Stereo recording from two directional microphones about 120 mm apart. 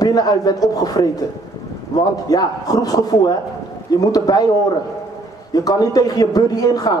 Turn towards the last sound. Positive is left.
turn(degrees=30)  # may be behind; listen again after turning